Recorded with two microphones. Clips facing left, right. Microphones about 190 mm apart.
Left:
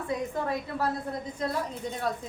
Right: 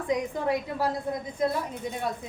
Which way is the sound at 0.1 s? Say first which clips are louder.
Right 4 dB; 15° right (ahead or behind).